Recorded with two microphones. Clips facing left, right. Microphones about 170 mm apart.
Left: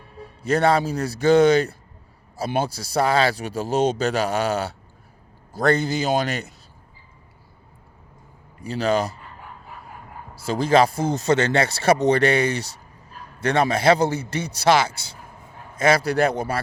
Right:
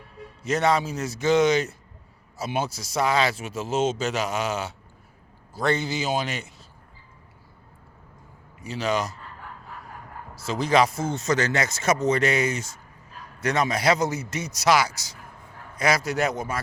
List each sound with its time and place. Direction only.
0.4 s a man's voice: 35° left (ahead or behind)
8.6 s a man's voice: 35° left (ahead or behind)
10.3 s a man's voice: 30° left (ahead or behind)